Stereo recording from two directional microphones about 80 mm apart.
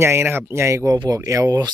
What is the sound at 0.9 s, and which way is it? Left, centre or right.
Speech, right.